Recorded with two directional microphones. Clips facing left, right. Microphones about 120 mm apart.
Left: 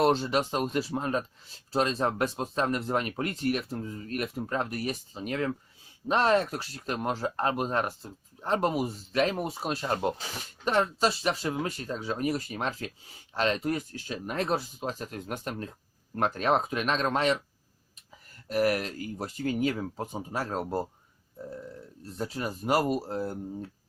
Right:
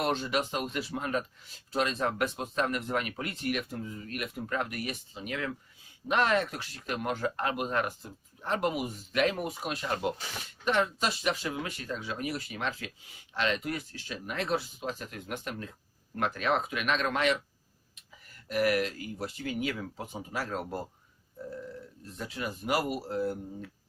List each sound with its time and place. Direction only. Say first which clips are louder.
0.0 s speech: left 5 dB; 35° left (ahead or behind)
18.4 s speech: left 1 dB; 40° left (ahead or behind)
22.0 s speech: left 4 dB; 35° left (ahead or behind)